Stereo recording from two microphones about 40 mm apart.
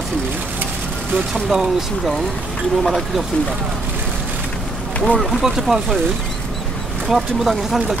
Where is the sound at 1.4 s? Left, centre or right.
Centre.